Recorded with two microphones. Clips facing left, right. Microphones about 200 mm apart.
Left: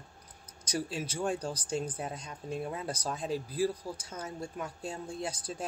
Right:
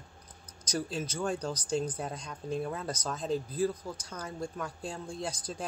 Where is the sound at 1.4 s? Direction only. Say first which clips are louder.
Right 1 dB; 30° left (ahead or behind).